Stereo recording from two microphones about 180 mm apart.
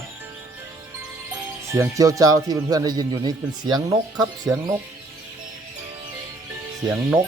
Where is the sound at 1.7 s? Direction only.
15° right (ahead or behind).